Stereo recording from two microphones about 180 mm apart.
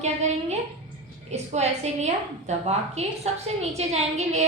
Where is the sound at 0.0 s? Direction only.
40° right (ahead or behind).